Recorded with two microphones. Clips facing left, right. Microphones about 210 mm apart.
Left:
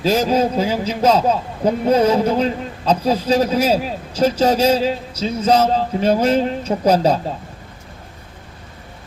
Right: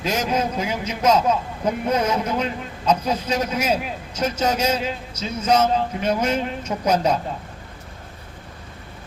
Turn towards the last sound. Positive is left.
turn(degrees=30)  # may be behind; listen again after turning